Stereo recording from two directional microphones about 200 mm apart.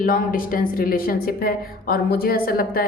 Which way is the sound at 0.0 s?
45° left (ahead or behind).